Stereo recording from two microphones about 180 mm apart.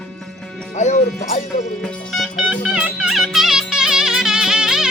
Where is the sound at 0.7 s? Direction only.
40° left (ahead or behind).